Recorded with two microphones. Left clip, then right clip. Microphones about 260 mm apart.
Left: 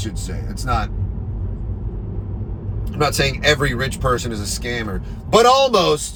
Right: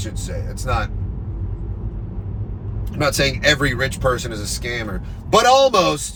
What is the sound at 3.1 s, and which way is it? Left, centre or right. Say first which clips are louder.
A man's voice: right 1 dB; centre.